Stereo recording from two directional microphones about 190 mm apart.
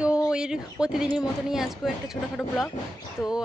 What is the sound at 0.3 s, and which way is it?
Speech, 5° right (ahead or behind).